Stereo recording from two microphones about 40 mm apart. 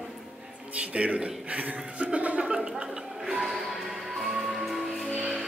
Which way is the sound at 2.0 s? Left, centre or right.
Right.